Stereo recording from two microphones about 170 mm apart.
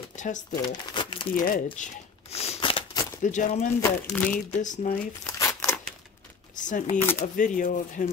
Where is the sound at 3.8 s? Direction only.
10° left (ahead or behind).